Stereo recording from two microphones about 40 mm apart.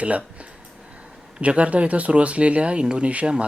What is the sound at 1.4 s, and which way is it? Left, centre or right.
Speech, right.